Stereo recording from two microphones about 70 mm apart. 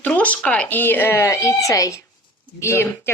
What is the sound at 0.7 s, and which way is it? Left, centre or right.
Speech, left.